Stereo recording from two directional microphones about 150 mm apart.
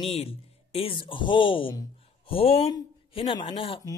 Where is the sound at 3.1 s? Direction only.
35° left (ahead or behind).